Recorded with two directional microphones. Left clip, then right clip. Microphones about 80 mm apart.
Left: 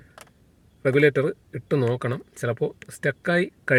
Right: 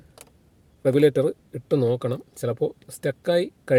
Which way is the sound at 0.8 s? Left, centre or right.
Right.